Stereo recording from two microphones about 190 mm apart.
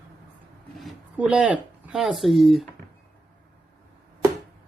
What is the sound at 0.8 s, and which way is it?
Speech, 5° right (ahead or behind).